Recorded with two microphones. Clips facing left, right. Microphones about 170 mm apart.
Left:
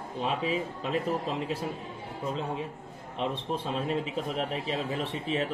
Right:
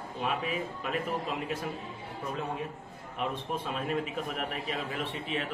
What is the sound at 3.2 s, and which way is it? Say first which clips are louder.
A man's voice: left 2 dB; 30° left (ahead or behind).